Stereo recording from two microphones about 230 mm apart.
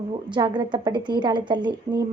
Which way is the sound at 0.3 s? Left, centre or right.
Centre.